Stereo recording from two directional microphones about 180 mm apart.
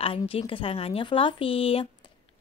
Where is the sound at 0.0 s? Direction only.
30° left (ahead or behind).